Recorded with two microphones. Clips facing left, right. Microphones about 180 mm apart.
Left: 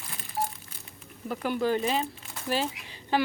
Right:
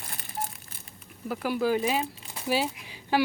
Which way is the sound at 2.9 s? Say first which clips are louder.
Right 2 dB; 10° right (ahead or behind).